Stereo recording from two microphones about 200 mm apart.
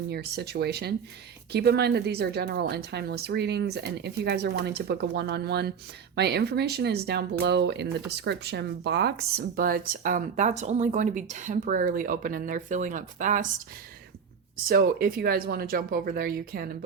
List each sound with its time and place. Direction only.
0.1 s a woman's voice: 55° right (ahead or behind)
14.6 s speech: 50° right (ahead or behind)